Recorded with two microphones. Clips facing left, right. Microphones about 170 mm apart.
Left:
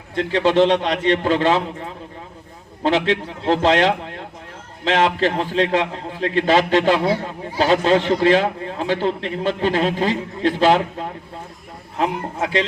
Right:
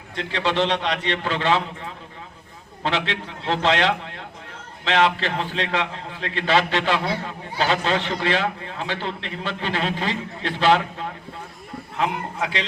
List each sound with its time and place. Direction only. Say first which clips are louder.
0.2 s a man's voice: left 7 dB; 45° left (ahead or behind)